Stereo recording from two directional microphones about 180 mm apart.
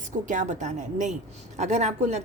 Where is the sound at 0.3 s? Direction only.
45° right (ahead or behind).